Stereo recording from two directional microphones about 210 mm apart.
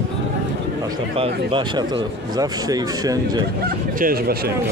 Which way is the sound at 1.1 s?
25° right (ahead or behind).